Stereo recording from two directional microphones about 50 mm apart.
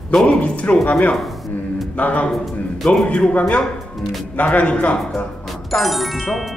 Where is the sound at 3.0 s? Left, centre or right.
Centre.